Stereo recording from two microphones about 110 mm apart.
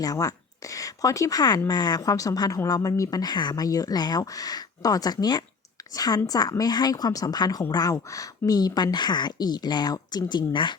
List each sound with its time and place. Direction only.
0.0 s speech: 30° left (ahead or behind)